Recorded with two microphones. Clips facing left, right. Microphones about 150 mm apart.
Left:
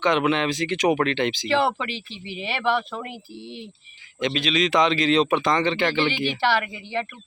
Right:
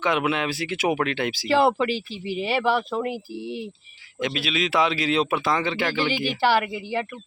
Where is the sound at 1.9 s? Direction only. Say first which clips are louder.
Right 7 dB; 40° right (ahead or behind).